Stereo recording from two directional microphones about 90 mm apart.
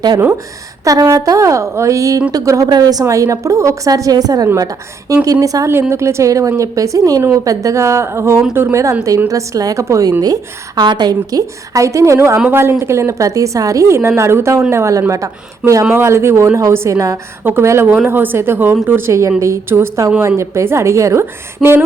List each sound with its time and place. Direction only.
0.9 s a woman's voice: 35° right (ahead or behind)
3.0 s a woman's voice: 35° right (ahead or behind)
9.0 s a woman's voice: 40° right (ahead or behind)